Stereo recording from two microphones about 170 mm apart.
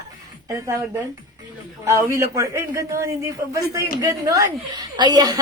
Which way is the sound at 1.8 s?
15° right (ahead or behind).